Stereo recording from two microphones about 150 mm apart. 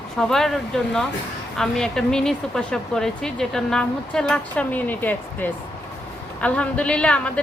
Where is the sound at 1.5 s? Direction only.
5° left (ahead or behind).